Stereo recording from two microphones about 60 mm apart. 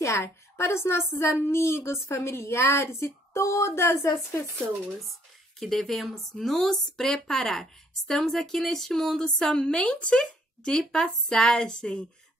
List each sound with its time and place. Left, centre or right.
0.0 s a woman's voice: left
5.6 s a woman's voice: centre